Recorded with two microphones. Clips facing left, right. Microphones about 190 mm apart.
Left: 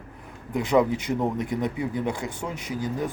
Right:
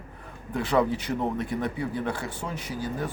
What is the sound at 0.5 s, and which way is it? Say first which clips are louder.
Speech: left 3 dB; 15° left (ahead or behind).